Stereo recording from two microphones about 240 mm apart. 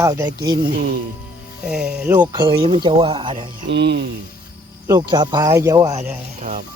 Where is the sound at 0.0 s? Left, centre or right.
Centre.